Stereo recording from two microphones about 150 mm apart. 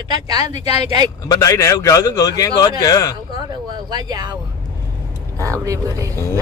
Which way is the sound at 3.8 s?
30° right (ahead or behind).